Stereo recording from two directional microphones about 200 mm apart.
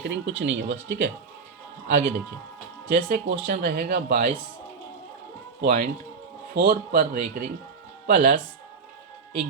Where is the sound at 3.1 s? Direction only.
50° right (ahead or behind).